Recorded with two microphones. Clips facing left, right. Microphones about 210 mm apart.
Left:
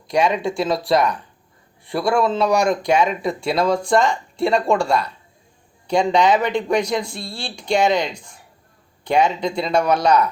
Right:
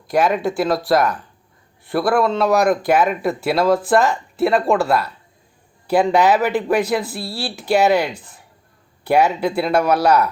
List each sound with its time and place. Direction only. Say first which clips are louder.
0.1 s speech: right 1 dB; 5° right (ahead or behind)